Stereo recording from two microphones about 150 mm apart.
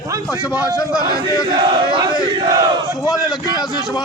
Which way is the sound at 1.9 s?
30° right (ahead or behind).